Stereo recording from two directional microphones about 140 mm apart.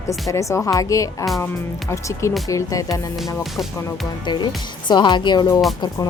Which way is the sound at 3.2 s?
Centre (ahead or behind).